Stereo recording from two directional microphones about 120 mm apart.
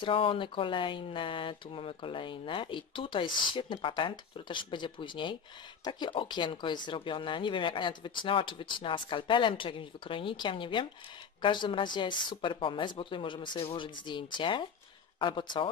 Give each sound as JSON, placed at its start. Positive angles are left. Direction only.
{"t": 0.0, "sound": "speech", "side_deg": 45}